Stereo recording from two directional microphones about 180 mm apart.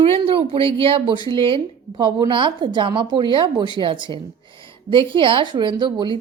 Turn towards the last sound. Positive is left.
turn(degrees=-25)  # may be behind; listen again after turning